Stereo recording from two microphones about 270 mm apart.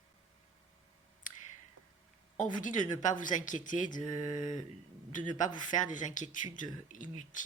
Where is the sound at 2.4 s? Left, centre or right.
Left.